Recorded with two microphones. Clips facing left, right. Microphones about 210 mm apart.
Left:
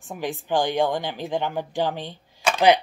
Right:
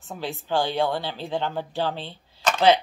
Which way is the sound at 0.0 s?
15° left (ahead or behind).